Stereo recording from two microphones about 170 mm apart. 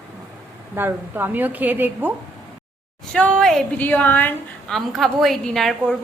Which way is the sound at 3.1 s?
5° left (ahead or behind).